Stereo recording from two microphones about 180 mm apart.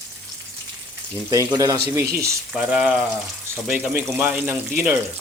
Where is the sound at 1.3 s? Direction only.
20° right (ahead or behind).